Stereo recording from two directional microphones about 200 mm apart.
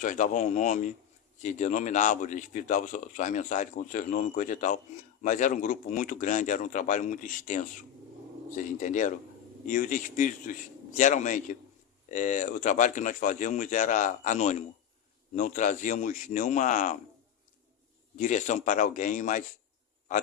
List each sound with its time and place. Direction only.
0.0 s speech: 40° left (ahead or behind)
8.8 s speech: 40° left (ahead or behind)
18.2 s speech: 35° left (ahead or behind)